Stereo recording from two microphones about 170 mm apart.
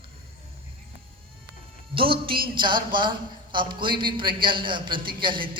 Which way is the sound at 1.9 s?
30° right (ahead or behind).